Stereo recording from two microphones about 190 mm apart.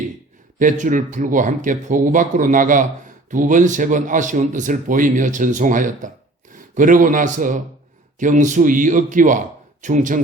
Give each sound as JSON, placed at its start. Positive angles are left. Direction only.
{"t": 0.6, "sound": "a man's voice", "side_deg": -45}